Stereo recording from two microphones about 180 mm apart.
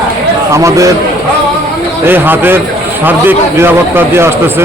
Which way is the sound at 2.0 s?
10° right (ahead or behind).